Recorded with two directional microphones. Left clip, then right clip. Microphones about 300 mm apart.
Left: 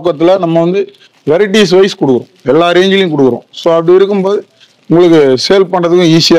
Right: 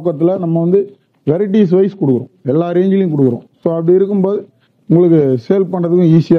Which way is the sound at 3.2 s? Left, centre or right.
Left.